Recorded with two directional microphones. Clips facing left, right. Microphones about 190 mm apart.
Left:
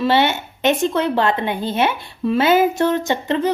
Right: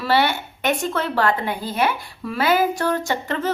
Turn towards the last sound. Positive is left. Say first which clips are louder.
# left 5 dB
turn(degrees=20)  # may be behind; listen again after turning